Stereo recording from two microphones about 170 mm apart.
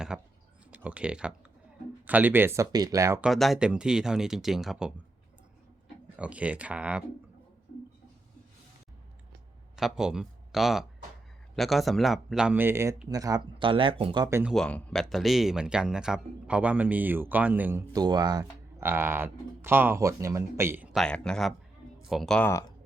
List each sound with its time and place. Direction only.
0.1 s speech: 5° right (ahead or behind)
0.7 s typing: 5° right (ahead or behind)
2.0 s speech: 10° right (ahead or behind)
3.2 s speech: centre (ahead or behind)
6.1 s speech: 5° right (ahead or behind)
9.7 s speech: 5° right (ahead or behind); by 14.3 s 30° right (ahead or behind)
14.3 s speech: 15° right (ahead or behind)
14.5 s speech: 5° left (ahead or behind); by 20.9 s 15° right (ahead or behind)
20.9 s speech: 5° left (ahead or behind)